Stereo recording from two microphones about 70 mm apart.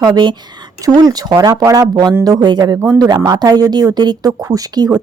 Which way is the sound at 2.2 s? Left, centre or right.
Right.